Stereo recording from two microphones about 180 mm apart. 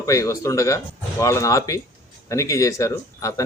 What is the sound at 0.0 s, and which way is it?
Speech, 15° left (ahead or behind).